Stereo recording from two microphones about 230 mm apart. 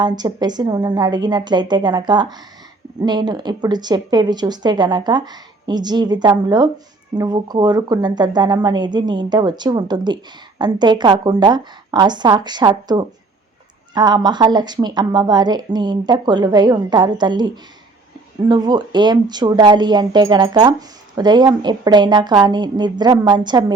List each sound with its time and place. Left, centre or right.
0.0 s a woman's voice: centre